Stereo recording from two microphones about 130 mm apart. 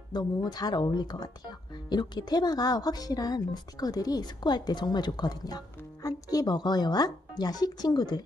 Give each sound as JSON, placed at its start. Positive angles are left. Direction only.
{"t": 0.1, "sound": "a woman's voice", "side_deg": 35}